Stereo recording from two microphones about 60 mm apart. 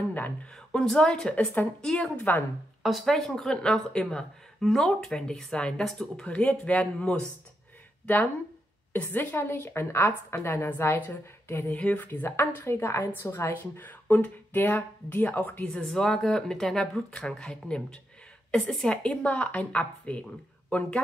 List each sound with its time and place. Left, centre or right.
0.1 s a sound: left
0.7 s speech: centre
1.3 s a woman's voice: left
1.8 s speech: centre
2.1 s speech: left
2.8 s speech: centre
3.2 s speech: centre
6.2 s a woman's voice: centre
8.9 s speech: left
12.1 s speech: left
15.6 s speech: centre
19.0 s a woman's voice: left